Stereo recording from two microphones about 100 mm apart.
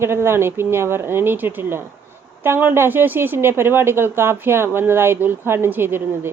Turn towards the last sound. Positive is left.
turn(degrees=-20)  # may be behind; listen again after turning